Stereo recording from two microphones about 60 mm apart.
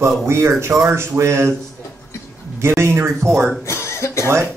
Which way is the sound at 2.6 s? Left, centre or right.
Right.